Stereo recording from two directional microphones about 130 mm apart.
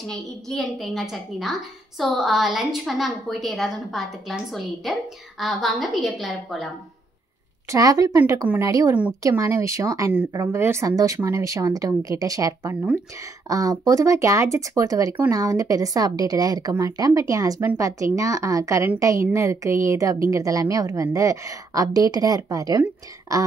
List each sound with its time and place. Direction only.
0.0 s a woman's voice: 5° left (ahead or behind)
7.7 s speech: 25° right (ahead or behind)